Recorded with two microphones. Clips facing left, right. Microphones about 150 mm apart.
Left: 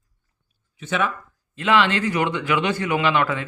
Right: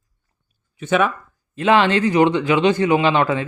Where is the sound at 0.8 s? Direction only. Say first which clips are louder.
Right 6 dB; 55° right (ahead or behind).